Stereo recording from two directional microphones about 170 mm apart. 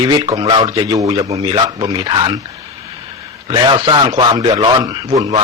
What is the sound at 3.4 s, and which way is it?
Speech, 30° right (ahead or behind).